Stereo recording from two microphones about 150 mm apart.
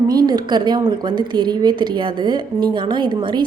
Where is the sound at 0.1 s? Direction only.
25° right (ahead or behind).